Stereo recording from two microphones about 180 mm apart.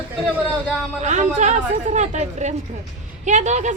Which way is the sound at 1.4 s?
40° right (ahead or behind).